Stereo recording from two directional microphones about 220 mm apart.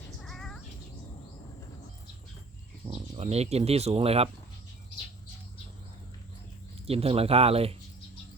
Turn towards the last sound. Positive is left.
turn(degrees=-25)  # may be behind; listen again after turning